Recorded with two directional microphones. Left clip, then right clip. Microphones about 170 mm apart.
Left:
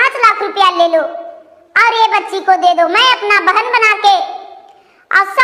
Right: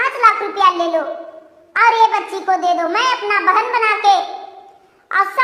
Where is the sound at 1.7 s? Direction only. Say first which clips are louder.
Left 2 dB; 20° left (ahead or behind).